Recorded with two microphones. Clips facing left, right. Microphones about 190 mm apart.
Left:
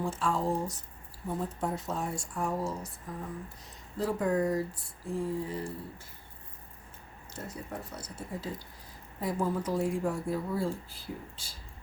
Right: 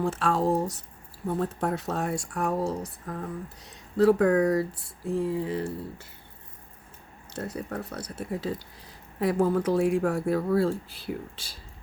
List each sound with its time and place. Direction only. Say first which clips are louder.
0.0 s speech: right 5 dB; 70° right (ahead or behind)
7.3 s speech: right 7 dB; 70° right (ahead or behind)